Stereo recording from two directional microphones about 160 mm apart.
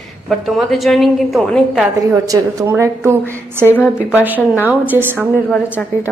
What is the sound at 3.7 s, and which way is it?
Speech, 15° left (ahead or behind).